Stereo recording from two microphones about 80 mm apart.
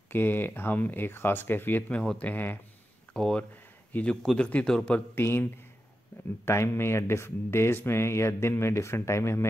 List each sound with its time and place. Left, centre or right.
0.1 s speech: left
3.1 s a man's voice: centre
5.1 s speech: left